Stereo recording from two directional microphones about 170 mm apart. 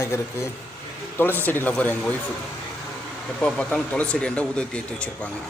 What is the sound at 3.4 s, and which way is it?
Speech, 5° left (ahead or behind).